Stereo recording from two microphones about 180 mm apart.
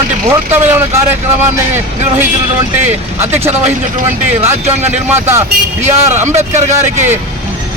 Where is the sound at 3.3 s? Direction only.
10° right (ahead or behind).